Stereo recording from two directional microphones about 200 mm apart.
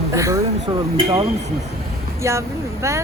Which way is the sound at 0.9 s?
25° right (ahead or behind).